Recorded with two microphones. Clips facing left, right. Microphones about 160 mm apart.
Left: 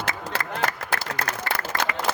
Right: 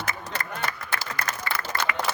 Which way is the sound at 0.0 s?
90° left.